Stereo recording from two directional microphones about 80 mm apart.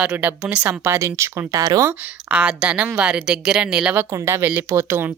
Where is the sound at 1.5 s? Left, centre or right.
Right.